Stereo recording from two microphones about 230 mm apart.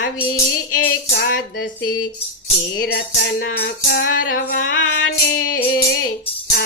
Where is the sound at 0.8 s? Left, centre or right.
Left.